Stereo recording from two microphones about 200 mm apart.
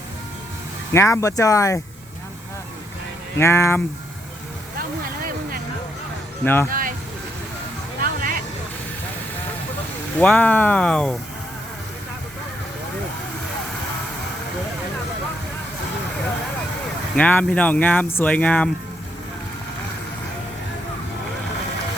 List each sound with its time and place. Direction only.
0.9 s speech: 15° left (ahead or behind)
3.3 s speech: 15° left (ahead or behind)
6.4 s speech: 10° left (ahead or behind)
6.7 s music: 45° right (ahead or behind)
8.0 s a sound: 45° right (ahead or behind)
10.2 s speech: 5° left (ahead or behind)
17.2 s speech: 5° left (ahead or behind)